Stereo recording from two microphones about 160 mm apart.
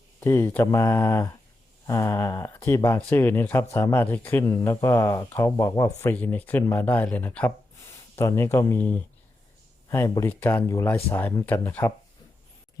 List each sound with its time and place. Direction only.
0.2 s speech: 15° left (ahead or behind)